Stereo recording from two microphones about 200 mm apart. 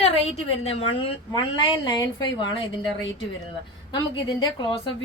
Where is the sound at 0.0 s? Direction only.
30° left (ahead or behind).